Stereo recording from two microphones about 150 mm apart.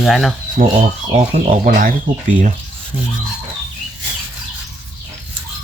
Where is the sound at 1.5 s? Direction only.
65° right (ahead or behind).